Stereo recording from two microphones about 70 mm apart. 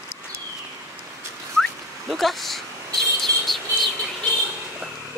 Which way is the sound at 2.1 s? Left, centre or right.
Centre.